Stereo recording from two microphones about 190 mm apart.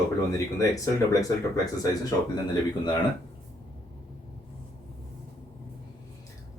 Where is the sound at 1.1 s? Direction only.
20° left (ahead or behind).